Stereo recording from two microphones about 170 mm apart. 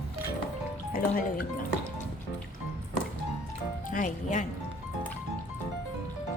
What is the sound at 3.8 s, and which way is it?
Speech, 50° left (ahead or behind).